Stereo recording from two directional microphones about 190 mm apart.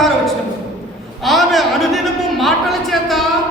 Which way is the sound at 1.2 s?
Centre (ahead or behind).